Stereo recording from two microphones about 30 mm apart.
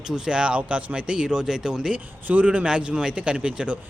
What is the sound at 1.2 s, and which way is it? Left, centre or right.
Speech, right.